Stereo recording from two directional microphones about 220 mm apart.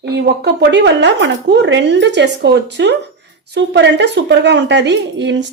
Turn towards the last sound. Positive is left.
turn(degrees=-55)  # may be behind; listen again after turning